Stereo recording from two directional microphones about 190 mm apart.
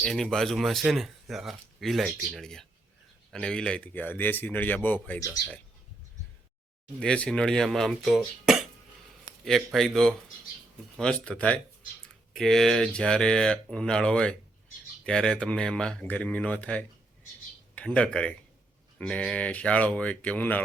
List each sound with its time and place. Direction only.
0.0 s speech: 5° left (ahead or behind)
7.0 s speech: 5° left (ahead or behind)